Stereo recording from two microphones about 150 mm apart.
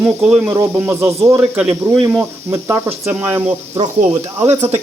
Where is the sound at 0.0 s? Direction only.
5° right (ahead or behind).